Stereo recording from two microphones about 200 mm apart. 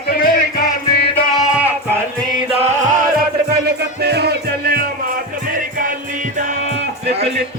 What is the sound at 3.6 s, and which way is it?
Music, 55° right (ahead or behind).